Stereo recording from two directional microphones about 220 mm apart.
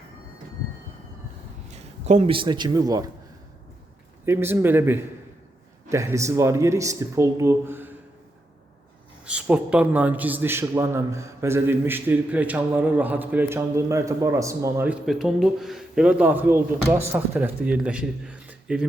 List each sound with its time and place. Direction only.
1.6 s a man's voice: 30° right (ahead or behind)
4.3 s a man's voice: 10° right (ahead or behind)
9.2 s a man's voice: 5° right (ahead or behind)